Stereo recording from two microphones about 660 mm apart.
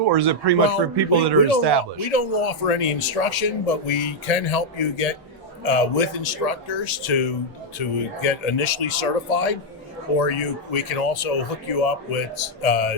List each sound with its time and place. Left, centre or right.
0.1 s speech: right
2.0 s speech: left